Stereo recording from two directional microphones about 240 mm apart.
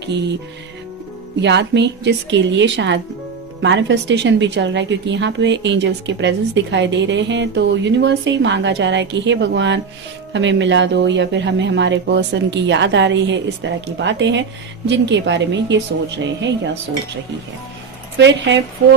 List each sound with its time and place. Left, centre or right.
0.0 s music: right
1.4 s a woman's voice: right
18.2 s a woman's voice: right